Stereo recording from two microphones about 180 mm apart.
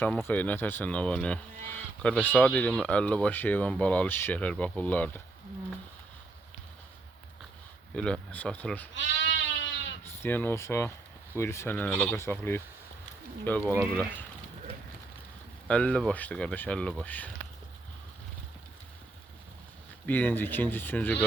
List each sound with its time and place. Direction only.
0.0 s speech: 10° left (ahead or behind)
7.9 s speech: 5° left (ahead or behind)
9.0 s speech: 90° left
10.0 s speech: 10° left (ahead or behind)
15.6 s speech: 5° left (ahead or behind)
20.1 s speech: 10° left (ahead or behind)